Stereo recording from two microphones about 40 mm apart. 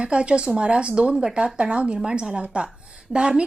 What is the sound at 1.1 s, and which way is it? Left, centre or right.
A woman's voice, centre.